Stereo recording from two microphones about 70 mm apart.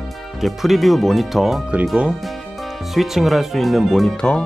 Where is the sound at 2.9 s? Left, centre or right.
Centre.